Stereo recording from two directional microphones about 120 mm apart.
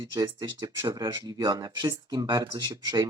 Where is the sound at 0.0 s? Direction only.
35° right (ahead or behind).